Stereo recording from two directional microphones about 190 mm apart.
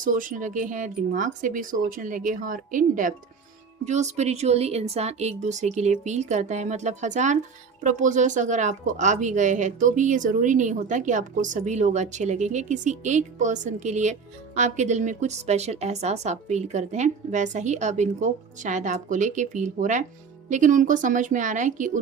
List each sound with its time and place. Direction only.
0.0 s a woman's voice: 45° right (ahead or behind)